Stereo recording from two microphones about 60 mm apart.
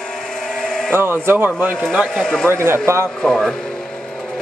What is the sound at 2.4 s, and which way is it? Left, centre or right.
Speech, right.